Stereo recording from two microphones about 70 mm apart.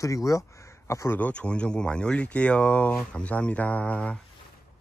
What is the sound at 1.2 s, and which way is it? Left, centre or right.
Speech, centre.